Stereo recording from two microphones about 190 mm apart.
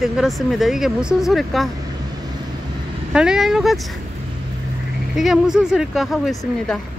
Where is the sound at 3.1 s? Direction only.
5° right (ahead or behind).